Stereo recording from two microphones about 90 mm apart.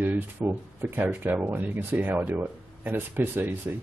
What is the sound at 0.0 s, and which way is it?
Speech, 15° right (ahead or behind).